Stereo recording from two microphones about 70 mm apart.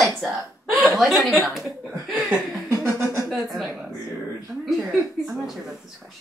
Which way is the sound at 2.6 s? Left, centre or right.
Right.